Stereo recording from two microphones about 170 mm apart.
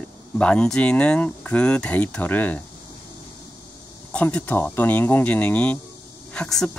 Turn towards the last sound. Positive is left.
turn(degrees=5)  # may be behind; listen again after turning